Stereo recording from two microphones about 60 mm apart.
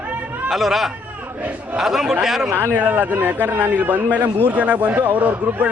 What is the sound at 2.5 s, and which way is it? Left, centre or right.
Speech, right.